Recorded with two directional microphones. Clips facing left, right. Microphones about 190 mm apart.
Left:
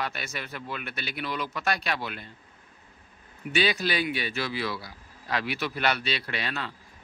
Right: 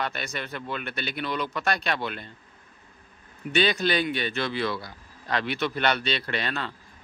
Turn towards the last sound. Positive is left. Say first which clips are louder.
# right 3 dB
turn(degrees=5)  # may be behind; listen again after turning